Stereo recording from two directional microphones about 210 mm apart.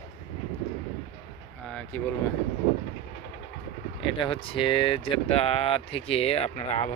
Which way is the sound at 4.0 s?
25° left (ahead or behind).